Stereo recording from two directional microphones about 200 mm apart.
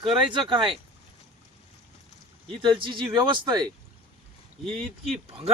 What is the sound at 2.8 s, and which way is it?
Speech, 25° right (ahead or behind).